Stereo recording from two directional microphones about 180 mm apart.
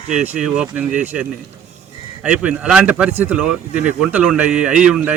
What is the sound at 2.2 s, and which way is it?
Speech, 5° right (ahead or behind).